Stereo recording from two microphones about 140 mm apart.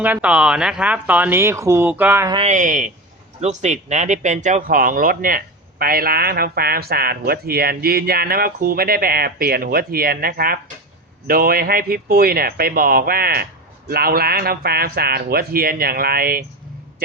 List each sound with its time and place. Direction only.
0.0 s speech: 10° right (ahead or behind)
2.4 s speech: 60° right (ahead or behind)
3.4 s speech: 55° right (ahead or behind); by 16.4 s 90° right